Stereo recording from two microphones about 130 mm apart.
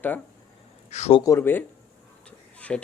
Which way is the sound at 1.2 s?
20° left (ahead or behind).